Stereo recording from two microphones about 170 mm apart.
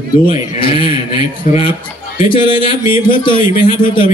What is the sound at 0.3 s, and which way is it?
Speech, 30° left (ahead or behind).